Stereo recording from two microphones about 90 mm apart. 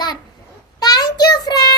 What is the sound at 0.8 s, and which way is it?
Child singing, 45° left (ahead or behind).